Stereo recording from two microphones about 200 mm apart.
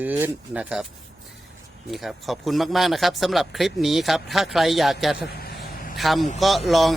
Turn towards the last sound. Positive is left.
turn(degrees=0)  # may be behind; listen again after turning